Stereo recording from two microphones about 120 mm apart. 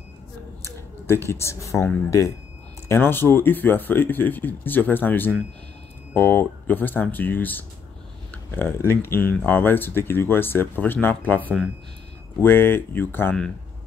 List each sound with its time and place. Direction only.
0.7 s speech: 20° left (ahead or behind)